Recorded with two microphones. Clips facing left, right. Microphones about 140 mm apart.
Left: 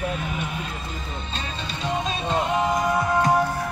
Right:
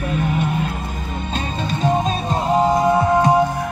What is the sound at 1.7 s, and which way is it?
Music, 45° right (ahead or behind).